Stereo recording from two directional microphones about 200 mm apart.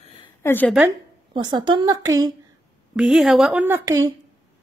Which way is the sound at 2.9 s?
5° right (ahead or behind).